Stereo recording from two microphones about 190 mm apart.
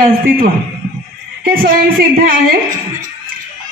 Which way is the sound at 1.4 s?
50° right (ahead or behind).